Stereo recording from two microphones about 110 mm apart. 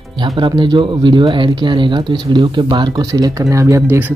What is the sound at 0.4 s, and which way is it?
Speech, 45° right (ahead or behind).